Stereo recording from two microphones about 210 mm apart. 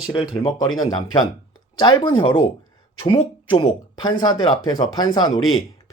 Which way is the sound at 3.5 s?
25° left (ahead or behind).